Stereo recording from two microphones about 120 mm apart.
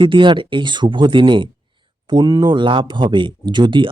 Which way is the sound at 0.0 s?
45° right (ahead or behind).